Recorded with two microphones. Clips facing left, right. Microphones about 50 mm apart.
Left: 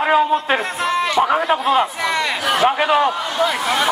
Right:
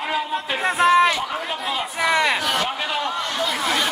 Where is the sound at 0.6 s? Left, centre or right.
Centre.